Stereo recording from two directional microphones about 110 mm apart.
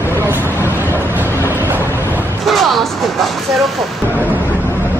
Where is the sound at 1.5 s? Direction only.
20° right (ahead or behind).